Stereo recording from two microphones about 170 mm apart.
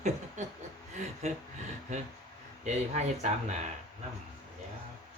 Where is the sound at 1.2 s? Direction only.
40° right (ahead or behind).